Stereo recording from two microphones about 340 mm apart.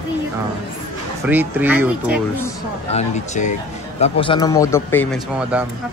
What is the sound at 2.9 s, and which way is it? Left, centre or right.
A man's voice, centre.